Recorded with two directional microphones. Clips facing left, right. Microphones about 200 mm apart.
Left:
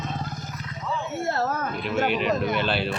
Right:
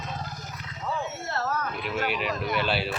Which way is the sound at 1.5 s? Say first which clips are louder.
Left 3 dB; 45° left (ahead or behind).